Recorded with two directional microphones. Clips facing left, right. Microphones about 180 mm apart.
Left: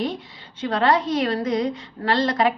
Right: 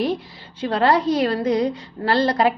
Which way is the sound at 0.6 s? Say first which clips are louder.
Right 2 dB; 30° right (ahead or behind).